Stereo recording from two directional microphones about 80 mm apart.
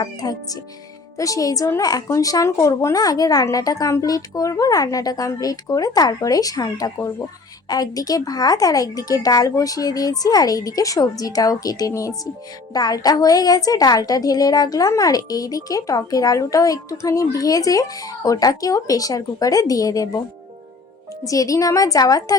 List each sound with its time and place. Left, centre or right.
0.0 s a woman's voice: left
12.7 s a woman's voice: left
21.2 s a woman's voice: left